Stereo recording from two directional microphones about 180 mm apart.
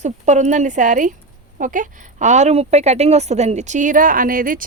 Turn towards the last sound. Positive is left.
turn(degrees=-50)  # may be behind; listen again after turning